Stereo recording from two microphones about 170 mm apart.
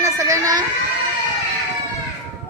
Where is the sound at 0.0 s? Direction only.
20° right (ahead or behind).